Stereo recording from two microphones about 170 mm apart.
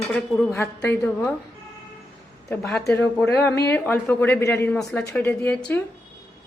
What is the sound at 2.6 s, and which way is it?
A woman's voice, centre (ahead or behind).